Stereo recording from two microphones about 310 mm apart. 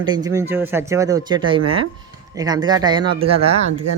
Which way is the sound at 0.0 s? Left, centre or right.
Centre.